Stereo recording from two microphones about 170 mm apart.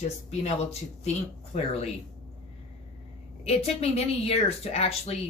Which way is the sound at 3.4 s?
35° left (ahead or behind).